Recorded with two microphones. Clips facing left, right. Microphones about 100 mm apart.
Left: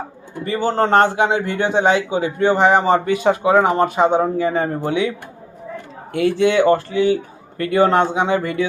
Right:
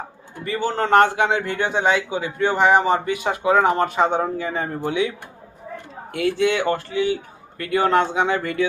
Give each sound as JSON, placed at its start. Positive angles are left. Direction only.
{"t": 0.4, "sound": "a man's voice", "side_deg": 30}
{"t": 6.1, "sound": "a man's voice", "side_deg": 25}